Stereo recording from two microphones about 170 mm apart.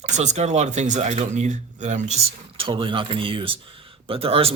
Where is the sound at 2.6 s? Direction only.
30° right (ahead or behind).